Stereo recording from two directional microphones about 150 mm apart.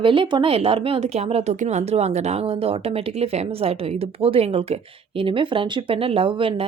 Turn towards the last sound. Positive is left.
turn(degrees=-35)  # may be behind; listen again after turning